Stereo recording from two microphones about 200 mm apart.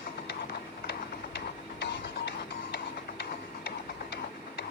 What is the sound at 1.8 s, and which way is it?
Music, 60° left (ahead or behind).